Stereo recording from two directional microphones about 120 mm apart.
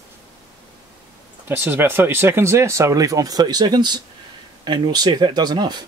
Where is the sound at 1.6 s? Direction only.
15° right (ahead or behind).